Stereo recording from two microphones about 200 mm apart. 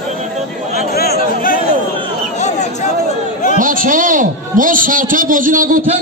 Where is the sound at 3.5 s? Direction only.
45° right (ahead or behind).